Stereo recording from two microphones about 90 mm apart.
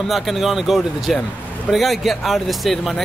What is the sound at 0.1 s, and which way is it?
Speech, centre (ahead or behind).